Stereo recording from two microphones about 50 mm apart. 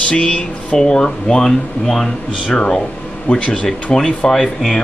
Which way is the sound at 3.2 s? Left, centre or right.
Left.